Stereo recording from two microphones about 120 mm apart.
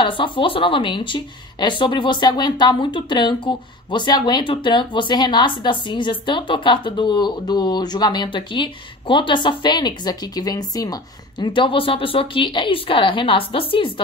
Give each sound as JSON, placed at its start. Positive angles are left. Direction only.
{"t": 0.0, "sound": "speech", "side_deg": 45}